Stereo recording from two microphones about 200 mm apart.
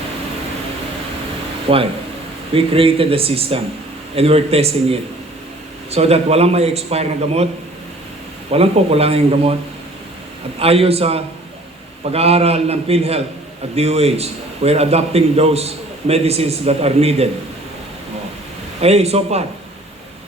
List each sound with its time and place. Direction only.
1.7 s a man's voice: 30° right (ahead or behind)
8.4 s speech: 30° right (ahead or behind)
10.6 s a man's voice: 30° right (ahead or behind)
18.8 s a man's voice: 30° right (ahead or behind)